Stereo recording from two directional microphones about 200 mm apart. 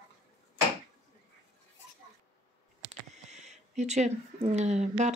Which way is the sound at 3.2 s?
35° right (ahead or behind).